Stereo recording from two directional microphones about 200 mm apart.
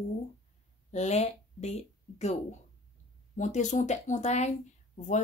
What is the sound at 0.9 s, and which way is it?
A woman's voice, 35° left (ahead or behind).